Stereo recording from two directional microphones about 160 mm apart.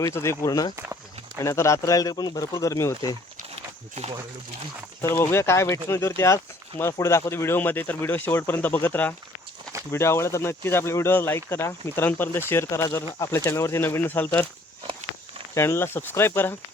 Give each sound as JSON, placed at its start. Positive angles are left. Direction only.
{"t": 0.0, "sound": "speech", "side_deg": 15}
{"t": 3.5, "sound": "a sound", "side_deg": -40}
{"t": 5.1, "sound": "speech", "side_deg": 15}
{"t": 15.5, "sound": "speech", "side_deg": 15}